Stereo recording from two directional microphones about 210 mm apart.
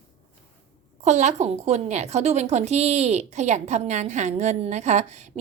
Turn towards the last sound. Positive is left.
turn(degrees=-35)  # may be behind; listen again after turning